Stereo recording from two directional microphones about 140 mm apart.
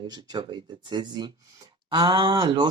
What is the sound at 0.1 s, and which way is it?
Speech, 30° right (ahead or behind).